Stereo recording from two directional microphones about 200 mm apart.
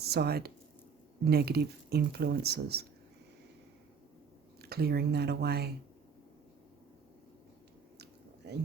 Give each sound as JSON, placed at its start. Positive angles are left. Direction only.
{"t": 0.0, "sound": "speech", "side_deg": -55}
{"t": 4.6, "sound": "speech", "side_deg": -50}